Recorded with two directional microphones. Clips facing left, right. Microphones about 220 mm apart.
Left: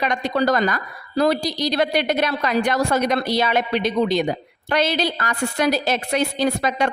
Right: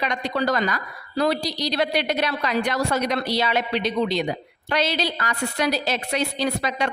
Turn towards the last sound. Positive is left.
turn(degrees=50)  # may be behind; listen again after turning